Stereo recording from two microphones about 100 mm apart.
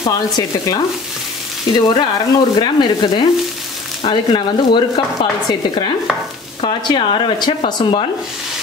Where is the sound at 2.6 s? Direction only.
50° left (ahead or behind).